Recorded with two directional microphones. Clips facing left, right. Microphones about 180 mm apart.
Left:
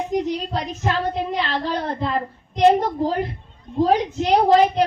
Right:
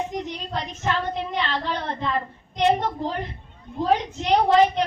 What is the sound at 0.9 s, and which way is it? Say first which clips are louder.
Child singing: left 3 dB; 35° left (ahead or behind).